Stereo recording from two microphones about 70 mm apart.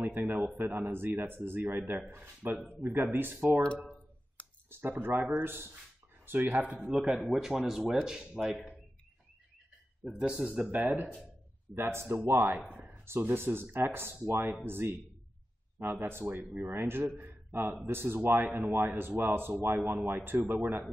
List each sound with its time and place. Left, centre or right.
0.0 s speech: right
2.7 s speech: right
3.6 s a sound: centre
4.6 s speech: right
7.0 s speech: centre
10.1 s speech: centre
11.8 s speech: right
12.9 s speech: right